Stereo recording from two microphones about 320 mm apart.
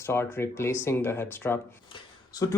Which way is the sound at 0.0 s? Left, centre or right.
Centre.